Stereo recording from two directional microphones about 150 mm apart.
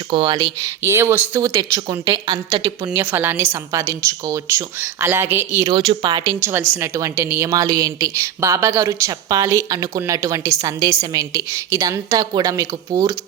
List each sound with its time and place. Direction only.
0.1 s speech: 35° right (ahead or behind)
0.8 s speech: 20° right (ahead or behind)
3.0 s a woman's voice: 15° right (ahead or behind)
5.6 s speech: 35° right (ahead or behind)
6.4 s speech: 15° right (ahead or behind)